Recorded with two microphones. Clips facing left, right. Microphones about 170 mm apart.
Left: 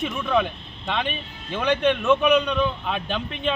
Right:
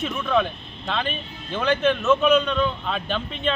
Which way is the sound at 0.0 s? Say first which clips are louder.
Even; 10° left (ahead or behind).